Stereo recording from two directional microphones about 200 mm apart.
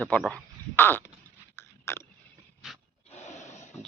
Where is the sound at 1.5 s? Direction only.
10° left (ahead or behind).